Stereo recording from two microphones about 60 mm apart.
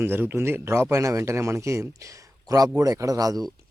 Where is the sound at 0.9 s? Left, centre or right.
Right.